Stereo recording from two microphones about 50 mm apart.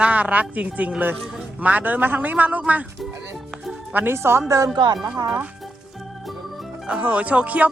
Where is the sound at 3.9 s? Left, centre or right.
Right.